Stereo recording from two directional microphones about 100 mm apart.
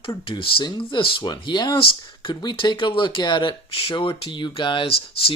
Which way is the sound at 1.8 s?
60° left (ahead or behind).